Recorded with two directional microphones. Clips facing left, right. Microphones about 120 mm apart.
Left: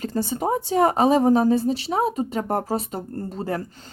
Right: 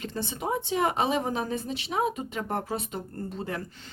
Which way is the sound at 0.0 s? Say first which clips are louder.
Left 8 dB; 40° left (ahead or behind).